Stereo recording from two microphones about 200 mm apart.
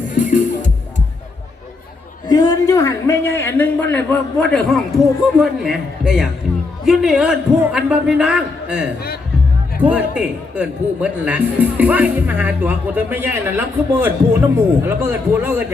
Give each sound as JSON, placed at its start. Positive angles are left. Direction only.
{"t": 0.1, "sound": "music", "side_deg": 40}
{"t": 2.2, "sound": "a man's voice", "side_deg": 20}